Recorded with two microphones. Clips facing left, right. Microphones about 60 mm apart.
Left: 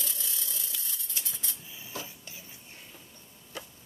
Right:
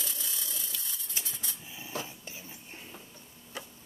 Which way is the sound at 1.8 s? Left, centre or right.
Right.